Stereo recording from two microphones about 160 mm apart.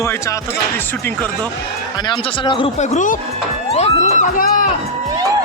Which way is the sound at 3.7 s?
45° left (ahead or behind).